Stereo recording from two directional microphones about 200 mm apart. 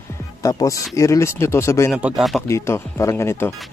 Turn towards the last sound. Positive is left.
turn(degrees=10)  # may be behind; listen again after turning